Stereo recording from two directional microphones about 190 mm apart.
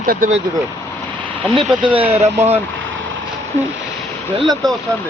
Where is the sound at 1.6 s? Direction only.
30° right (ahead or behind).